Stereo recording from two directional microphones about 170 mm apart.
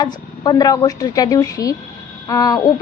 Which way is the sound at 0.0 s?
25° left (ahead or behind).